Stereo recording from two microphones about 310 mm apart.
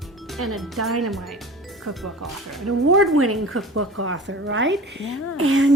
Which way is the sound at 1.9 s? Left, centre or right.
Right.